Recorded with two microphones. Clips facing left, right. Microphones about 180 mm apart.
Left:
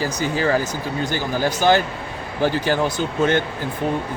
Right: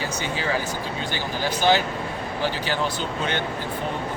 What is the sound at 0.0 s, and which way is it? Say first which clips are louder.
Speech: left 6 dB; 40° left (ahead or behind).